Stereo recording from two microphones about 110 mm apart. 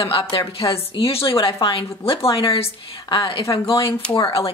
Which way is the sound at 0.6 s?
55° left (ahead or behind).